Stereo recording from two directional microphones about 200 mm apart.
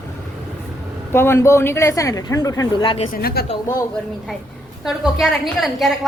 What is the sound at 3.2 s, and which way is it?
Speech, 50° left (ahead or behind).